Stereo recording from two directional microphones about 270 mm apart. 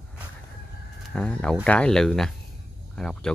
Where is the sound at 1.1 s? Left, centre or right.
Centre.